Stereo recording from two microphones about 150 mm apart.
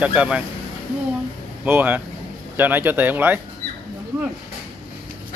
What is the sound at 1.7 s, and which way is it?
Speech, 10° right (ahead or behind).